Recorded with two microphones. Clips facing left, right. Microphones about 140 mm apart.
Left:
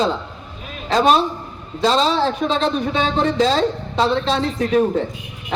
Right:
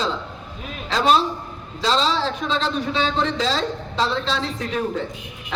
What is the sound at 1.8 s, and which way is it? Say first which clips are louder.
Speech: left 4 dB; 55° left (ahead or behind).